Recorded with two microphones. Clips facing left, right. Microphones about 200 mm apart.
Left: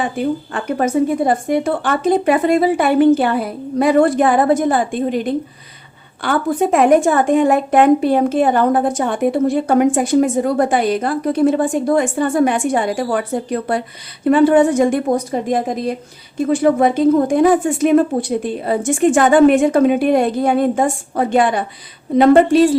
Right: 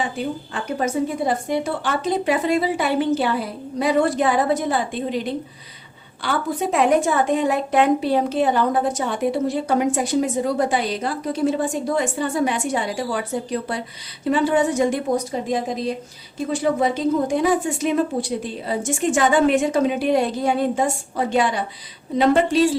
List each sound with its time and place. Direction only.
0.5 s a woman's voice: 55° left (ahead or behind)